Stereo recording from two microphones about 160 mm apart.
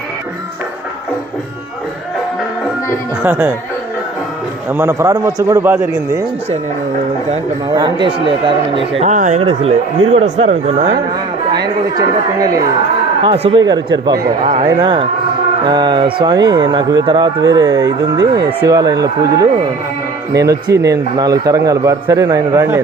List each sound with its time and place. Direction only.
3.2 s a man's voice: 15° right (ahead or behind)
4.7 s a man's voice: 15° right (ahead or behind)
7.7 s speech: 25° right (ahead or behind); by 9.4 s 50° right (ahead or behind)
9.4 s speech: 40° right (ahead or behind)
11.5 s speech: 25° right (ahead or behind)
13.2 s a man's voice: 35° right (ahead or behind); by 22.8 s 15° right (ahead or behind)